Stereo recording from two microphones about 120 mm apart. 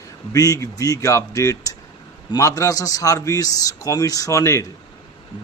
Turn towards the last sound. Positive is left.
turn(degrees=25)  # may be behind; listen again after turning